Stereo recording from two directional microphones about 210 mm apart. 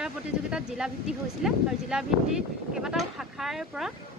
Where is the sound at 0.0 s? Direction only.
5° right (ahead or behind).